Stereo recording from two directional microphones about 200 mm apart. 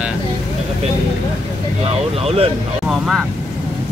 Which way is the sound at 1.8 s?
30° right (ahead or behind).